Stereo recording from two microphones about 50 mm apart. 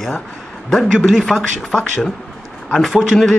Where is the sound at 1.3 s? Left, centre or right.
Centre.